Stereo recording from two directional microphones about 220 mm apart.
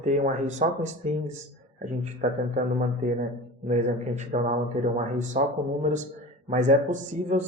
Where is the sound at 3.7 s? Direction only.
35° right (ahead or behind).